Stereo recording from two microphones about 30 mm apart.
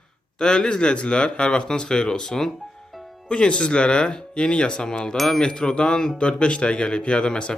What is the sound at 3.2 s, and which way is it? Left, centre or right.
A man's voice, left.